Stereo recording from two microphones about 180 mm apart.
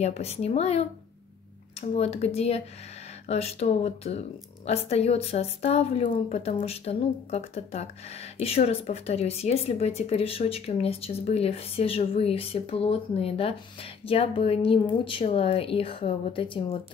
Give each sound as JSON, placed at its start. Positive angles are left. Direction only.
{"t": 0.0, "sound": "a woman's voice", "side_deg": 35}